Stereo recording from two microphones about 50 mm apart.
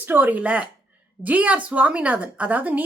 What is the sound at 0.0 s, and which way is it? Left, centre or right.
Speech, right.